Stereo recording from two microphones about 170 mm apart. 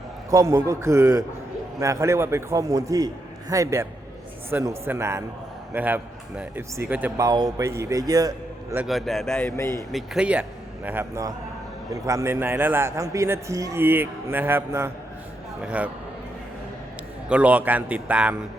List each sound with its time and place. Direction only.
0.3 s a man's voice: 15° right (ahead or behind)
7.3 s a man's voice: 20° right (ahead or behind)
8.8 s a man's voice: centre (ahead or behind)
9.5 s speech: 15° left (ahead or behind)
9.9 s a man's voice: 5° right (ahead or behind)
17.2 s a man's voice: 5° right (ahead or behind)